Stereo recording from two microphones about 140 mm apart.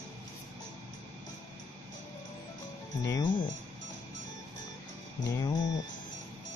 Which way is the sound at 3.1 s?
30° left (ahead or behind).